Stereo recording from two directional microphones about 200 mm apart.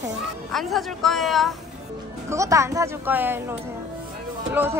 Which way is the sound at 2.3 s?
15° right (ahead or behind).